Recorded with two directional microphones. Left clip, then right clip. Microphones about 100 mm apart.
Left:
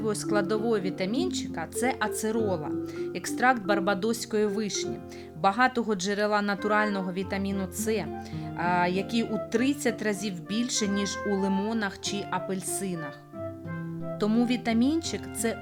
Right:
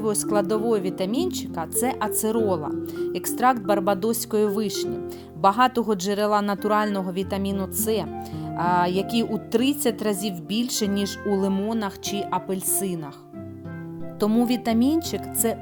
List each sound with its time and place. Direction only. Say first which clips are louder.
0.0 s speech: right 4 dB; 45° right (ahead or behind)
14.4 s speech: right 4 dB; 45° right (ahead or behind)